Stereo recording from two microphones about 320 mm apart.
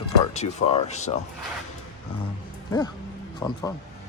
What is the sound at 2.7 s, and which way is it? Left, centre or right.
Music, centre.